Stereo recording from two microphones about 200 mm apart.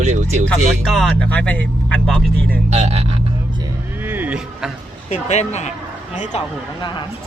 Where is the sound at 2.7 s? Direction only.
35° right (ahead or behind).